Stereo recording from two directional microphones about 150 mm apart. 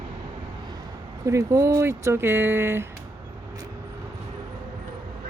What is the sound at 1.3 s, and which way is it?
Speech, 20° right (ahead or behind).